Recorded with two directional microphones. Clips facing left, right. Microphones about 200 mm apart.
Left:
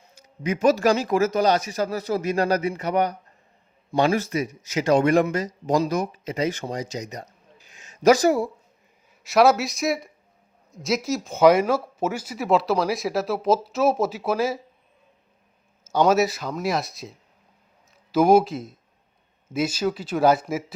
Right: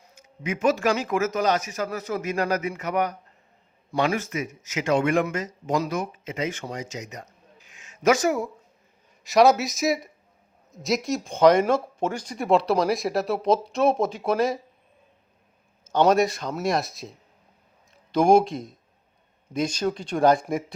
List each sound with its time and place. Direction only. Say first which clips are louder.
0.0 s speech: left 4 dB; 35° left (ahead or behind)
9.2 s speech: even; centre (ahead or behind)
15.8 s speech: even; 5° left (ahead or behind)